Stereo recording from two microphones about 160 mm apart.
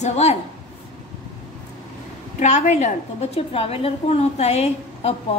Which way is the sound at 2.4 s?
45° left (ahead or behind).